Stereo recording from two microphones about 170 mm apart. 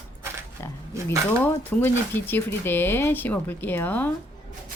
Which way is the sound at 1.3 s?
10° left (ahead or behind).